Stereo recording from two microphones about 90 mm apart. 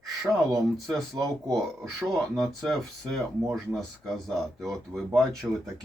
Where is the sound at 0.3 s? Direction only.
5° left (ahead or behind).